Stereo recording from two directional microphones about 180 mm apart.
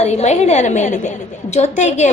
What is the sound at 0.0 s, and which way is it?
A woman's voice, 40° left (ahead or behind).